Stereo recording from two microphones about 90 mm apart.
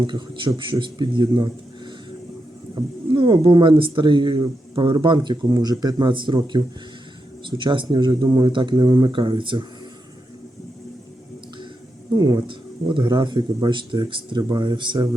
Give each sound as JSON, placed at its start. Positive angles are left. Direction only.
{"t": 0.0, "sound": "speech", "side_deg": -65}
{"t": 2.7, "sound": "speech", "side_deg": -60}
{"t": 12.1, "sound": "speech", "side_deg": -45}
{"t": 12.5, "sound": "speech", "side_deg": -65}